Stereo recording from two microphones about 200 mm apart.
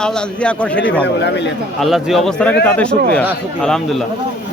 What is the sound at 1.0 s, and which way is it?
Speech, 60° left (ahead or behind).